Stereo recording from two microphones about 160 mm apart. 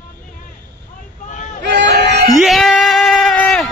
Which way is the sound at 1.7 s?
90° right.